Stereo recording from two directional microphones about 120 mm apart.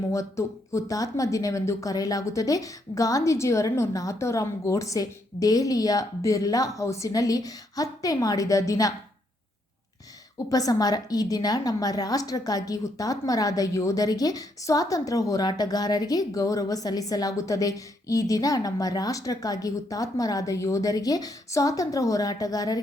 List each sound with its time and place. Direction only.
0.1 s speech: 25° left (ahead or behind)
10.5 s a woman's voice: 30° left (ahead or behind)